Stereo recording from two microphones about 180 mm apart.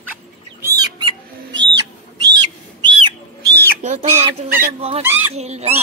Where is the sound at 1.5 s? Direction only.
80° right.